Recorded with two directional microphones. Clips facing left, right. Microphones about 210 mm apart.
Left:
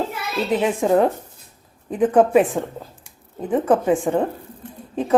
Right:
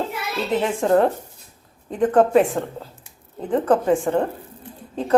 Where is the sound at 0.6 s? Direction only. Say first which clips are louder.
Even; 5° left (ahead or behind).